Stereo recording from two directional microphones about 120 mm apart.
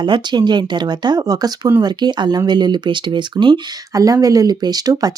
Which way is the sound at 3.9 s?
30° right (ahead or behind).